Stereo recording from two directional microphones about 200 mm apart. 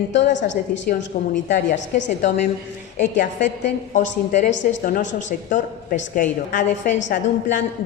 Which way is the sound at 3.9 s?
40° left (ahead or behind).